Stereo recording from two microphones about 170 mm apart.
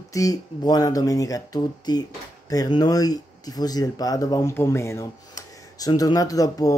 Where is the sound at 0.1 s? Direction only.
20° left (ahead or behind).